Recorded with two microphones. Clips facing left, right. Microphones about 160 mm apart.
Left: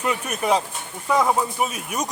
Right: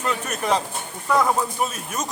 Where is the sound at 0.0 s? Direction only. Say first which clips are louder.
Left 1 dB; 10° left (ahead or behind).